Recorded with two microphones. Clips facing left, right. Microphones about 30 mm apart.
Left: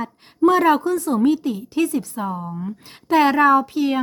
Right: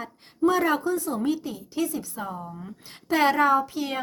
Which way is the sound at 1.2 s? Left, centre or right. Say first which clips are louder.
Left 9 dB; left.